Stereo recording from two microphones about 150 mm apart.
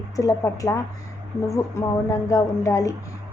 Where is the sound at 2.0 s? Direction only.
20° left (ahead or behind).